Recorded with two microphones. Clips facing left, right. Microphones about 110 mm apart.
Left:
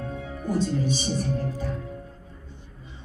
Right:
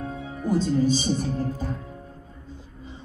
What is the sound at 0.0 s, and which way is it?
Music, 40° right (ahead or behind).